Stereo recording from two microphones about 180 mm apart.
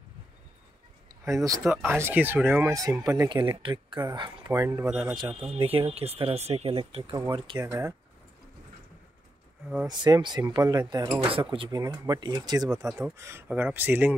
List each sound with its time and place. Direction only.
1.2 s speech: 20° right (ahead or behind)
4.5 s speech: 15° right (ahead or behind)
4.8 s a man's voice: 5° right (ahead or behind)
5.4 s speech: 30° right (ahead or behind)
9.8 s speech: 25° right (ahead or behind)
12.8 s speech: 10° right (ahead or behind)